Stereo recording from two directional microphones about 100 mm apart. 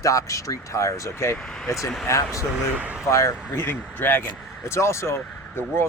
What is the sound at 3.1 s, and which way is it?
Speech, 30° left (ahead or behind).